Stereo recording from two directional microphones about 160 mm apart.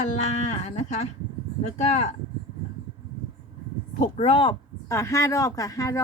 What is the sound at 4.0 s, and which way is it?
Speech, 40° left (ahead or behind).